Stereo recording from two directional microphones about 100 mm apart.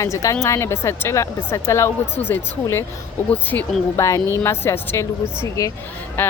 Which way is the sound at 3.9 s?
30° left (ahead or behind).